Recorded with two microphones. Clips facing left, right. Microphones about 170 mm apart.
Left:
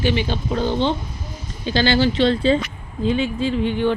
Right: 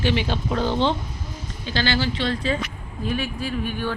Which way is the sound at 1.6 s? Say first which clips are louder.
Left 6 dB; 20° left (ahead or behind).